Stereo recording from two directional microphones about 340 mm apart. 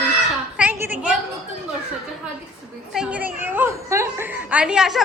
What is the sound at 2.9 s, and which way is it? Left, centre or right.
A woman's voice, centre.